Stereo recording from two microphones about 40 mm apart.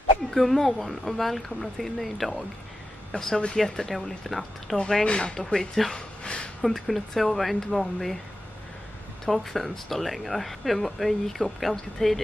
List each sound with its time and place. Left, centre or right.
0.3 s speech: centre
3.9 s speech: centre
5.0 s speech: left
5.4 s speech: centre
6.2 s a sound: left
6.6 s speech: centre
9.2 s speech: centre